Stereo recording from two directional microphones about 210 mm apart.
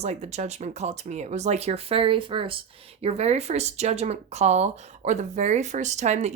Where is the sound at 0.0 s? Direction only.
30° right (ahead or behind).